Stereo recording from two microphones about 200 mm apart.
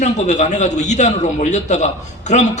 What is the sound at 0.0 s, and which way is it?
A man's voice, 35° left (ahead or behind).